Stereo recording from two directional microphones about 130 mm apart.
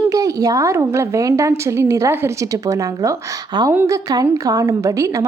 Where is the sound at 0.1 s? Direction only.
25° right (ahead or behind).